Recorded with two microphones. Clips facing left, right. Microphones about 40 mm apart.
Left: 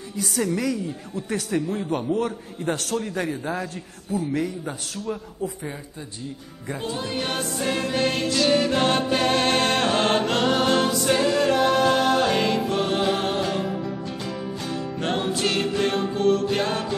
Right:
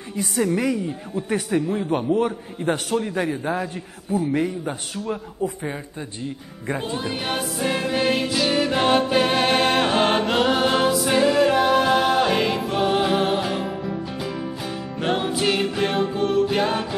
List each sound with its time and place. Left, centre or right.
0.6 s a man's voice: right
6.8 s music: centre